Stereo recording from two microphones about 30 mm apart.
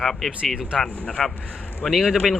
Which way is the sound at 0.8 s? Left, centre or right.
Left.